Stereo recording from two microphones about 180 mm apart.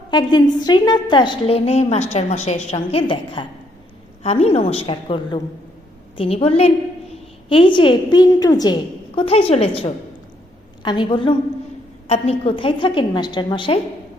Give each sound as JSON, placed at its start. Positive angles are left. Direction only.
{"t": 0.1, "sound": "a woman's voice", "side_deg": 25}
{"t": 9.1, "sound": "a woman's voice", "side_deg": 35}